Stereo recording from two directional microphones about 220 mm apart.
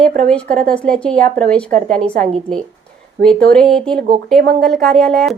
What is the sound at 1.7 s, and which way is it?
Speech, 40° right (ahead or behind).